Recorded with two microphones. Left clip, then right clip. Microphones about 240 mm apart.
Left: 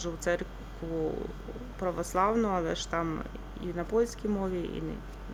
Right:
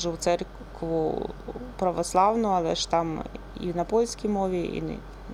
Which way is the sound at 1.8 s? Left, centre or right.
Centre.